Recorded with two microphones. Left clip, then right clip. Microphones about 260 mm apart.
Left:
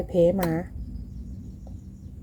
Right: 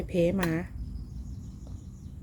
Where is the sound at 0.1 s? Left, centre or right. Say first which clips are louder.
Left 6 dB; centre.